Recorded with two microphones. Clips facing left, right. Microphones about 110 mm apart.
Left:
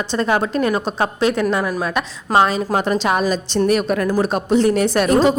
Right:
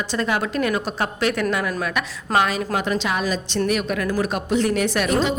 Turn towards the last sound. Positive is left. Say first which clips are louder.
# left 6 dB
turn(degrees=40)  # may be behind; listen again after turning